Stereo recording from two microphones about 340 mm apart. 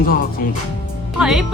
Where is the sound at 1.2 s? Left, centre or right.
Centre.